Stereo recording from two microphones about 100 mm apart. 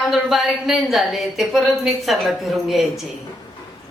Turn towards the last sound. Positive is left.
turn(degrees=-5)  # may be behind; listen again after turning